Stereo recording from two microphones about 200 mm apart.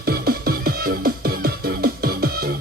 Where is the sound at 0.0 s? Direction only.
50° right (ahead or behind).